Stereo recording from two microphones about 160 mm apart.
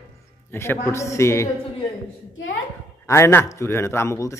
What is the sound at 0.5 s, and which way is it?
Speech, 15° left (ahead or behind).